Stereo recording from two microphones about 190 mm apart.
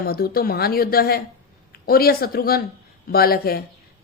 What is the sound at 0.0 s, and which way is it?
A woman's voice, 55° left (ahead or behind).